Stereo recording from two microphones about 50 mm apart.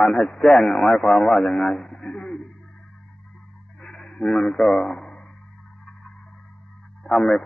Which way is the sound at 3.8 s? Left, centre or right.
Centre.